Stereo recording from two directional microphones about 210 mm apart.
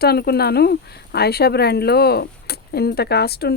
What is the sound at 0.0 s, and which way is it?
A woman's voice, 50° left (ahead or behind).